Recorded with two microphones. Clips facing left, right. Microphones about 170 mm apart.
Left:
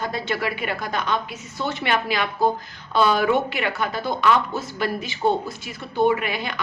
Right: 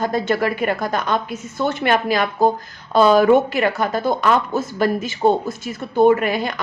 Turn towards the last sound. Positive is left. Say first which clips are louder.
# right 7 dB
turn(degrees=-45)  # may be behind; listen again after turning